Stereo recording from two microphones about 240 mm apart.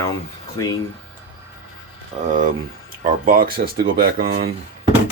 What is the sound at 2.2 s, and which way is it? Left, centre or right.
Speech, right.